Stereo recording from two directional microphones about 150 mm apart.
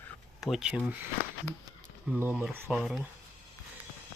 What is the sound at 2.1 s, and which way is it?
Speech, 10° right (ahead or behind).